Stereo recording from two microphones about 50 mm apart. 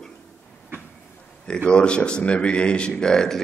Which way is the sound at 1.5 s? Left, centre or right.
Centre.